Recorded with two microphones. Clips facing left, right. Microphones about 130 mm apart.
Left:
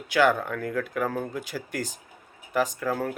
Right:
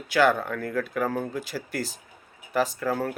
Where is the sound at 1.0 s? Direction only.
5° right (ahead or behind).